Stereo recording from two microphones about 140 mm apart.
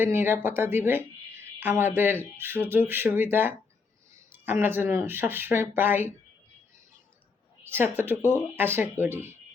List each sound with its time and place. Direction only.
0.0 s a woman's voice: 15° right (ahead or behind)
7.6 s a woman's voice: 15° right (ahead or behind)